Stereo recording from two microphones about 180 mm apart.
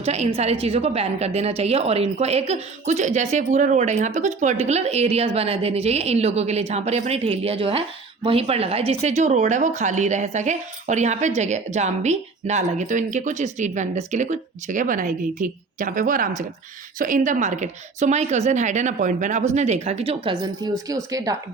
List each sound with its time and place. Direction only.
0.0 s a woman's voice: 35° right (ahead or behind); by 21.3 s 20° right (ahead or behind)